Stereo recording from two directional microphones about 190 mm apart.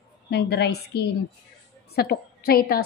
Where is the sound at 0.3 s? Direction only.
60° left (ahead or behind).